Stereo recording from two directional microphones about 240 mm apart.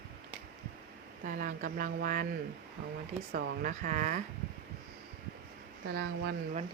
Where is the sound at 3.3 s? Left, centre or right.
Right.